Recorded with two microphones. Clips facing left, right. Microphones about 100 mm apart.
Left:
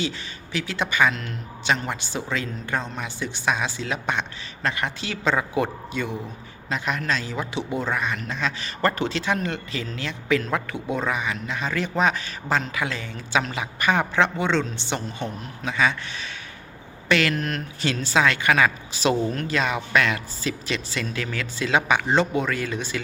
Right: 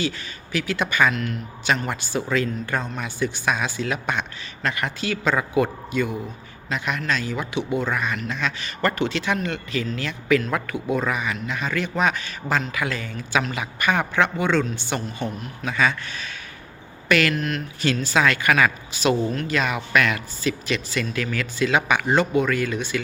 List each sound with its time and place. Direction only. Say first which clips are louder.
0.5 s a man's voice: right 2 dB; 25° left (ahead or behind)
17.3 s a man's voice: right 1 dB; 40° left (ahead or behind)
17.9 s a man's voice: even; 30° left (ahead or behind)